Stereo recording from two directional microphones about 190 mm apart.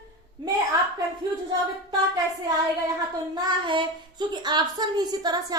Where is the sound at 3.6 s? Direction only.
25° right (ahead or behind).